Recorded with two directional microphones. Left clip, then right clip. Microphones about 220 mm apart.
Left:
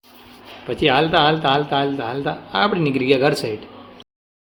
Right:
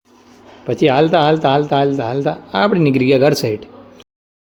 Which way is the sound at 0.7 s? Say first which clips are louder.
Right 4 dB; 25° right (ahead or behind).